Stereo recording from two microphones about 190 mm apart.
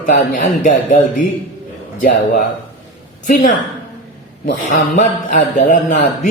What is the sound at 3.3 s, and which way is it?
A man's voice, 45° left (ahead or behind).